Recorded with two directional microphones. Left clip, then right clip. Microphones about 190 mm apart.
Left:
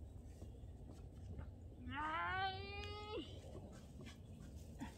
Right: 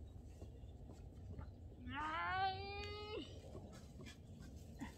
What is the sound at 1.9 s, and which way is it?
Baby cry, centre (ahead or behind).